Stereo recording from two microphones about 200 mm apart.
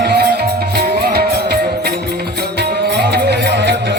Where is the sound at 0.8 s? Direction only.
50° right (ahead or behind).